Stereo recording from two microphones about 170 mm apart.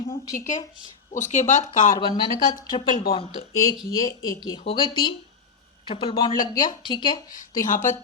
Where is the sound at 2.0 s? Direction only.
25° left (ahead or behind).